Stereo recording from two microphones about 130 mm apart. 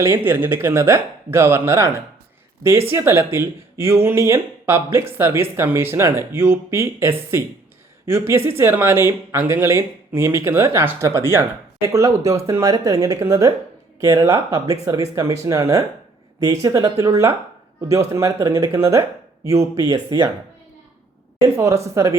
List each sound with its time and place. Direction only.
0.0 s speech: 20° right (ahead or behind)
21.4 s speech: 20° right (ahead or behind)